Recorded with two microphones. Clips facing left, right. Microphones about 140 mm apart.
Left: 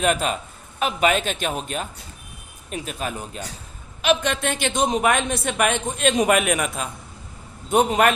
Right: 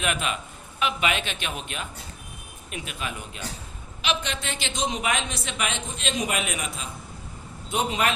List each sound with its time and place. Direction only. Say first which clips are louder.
0.0 s a man's voice: left 6 dB; 40° left (ahead or behind)
4.0 s a man's voice: left 8 dB; 50° left (ahead or behind)